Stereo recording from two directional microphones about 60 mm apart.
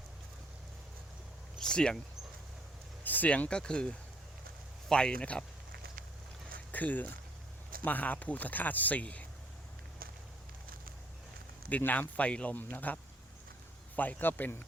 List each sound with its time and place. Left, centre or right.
1.5 s speech: centre
3.0 s speech: left
6.7 s speech: left
11.8 s speech: left